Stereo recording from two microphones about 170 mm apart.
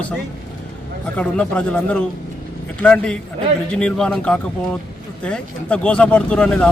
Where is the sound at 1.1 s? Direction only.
5° left (ahead or behind).